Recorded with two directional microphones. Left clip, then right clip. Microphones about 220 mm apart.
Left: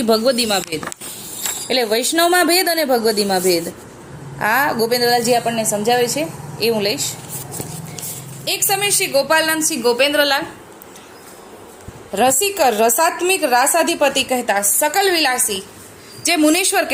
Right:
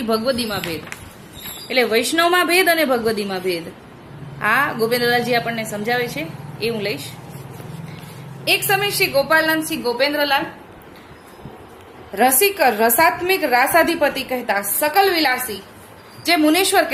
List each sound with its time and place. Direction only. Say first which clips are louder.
0.1 s a woman's voice: left 5 dB; 30° left (ahead or behind)
1.6 s a woman's voice: even; 25° left (ahead or behind)
8.4 s a woman's voice: right 1 dB; 30° left (ahead or behind)
12.1 s a woman's voice: even; 25° left (ahead or behind)